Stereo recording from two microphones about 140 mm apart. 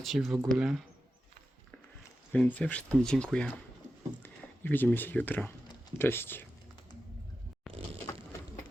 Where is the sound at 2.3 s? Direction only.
10° left (ahead or behind).